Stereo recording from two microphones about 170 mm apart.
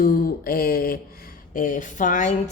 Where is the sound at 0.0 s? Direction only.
60° left (ahead or behind).